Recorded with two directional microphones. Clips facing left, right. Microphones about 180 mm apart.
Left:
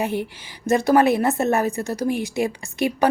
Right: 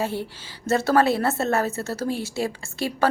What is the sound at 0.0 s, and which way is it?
A woman's voice, 15° left (ahead or behind).